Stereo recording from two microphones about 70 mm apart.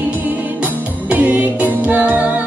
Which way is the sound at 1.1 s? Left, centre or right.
Right.